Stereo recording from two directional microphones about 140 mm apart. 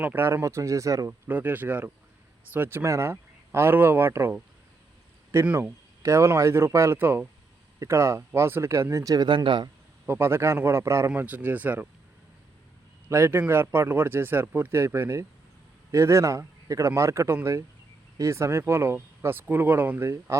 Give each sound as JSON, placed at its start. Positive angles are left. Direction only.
{"t": 0.0, "sound": "speech", "side_deg": -15}
{"t": 10.1, "sound": "speech", "side_deg": -15}
{"t": 13.1, "sound": "a man's voice", "side_deg": -20}